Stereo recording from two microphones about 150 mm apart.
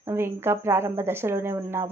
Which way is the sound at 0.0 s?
15° right (ahead or behind).